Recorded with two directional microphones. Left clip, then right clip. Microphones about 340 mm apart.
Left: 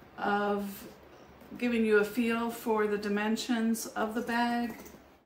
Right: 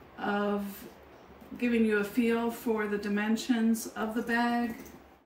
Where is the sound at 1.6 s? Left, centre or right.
Centre.